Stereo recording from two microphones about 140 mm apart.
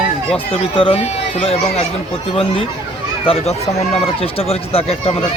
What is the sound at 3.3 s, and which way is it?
Speech, 45° left (ahead or behind).